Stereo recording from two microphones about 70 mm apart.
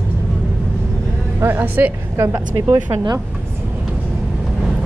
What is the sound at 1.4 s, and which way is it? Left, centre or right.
Speech, right.